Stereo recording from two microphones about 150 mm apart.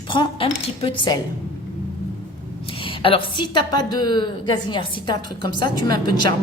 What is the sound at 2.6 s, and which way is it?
A woman's voice, 35° left (ahead or behind).